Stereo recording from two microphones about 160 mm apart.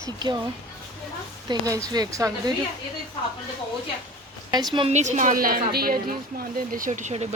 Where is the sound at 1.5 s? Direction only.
20° right (ahead or behind).